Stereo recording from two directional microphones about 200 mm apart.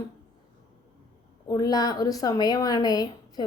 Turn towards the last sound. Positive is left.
turn(degrees=20)  # may be behind; listen again after turning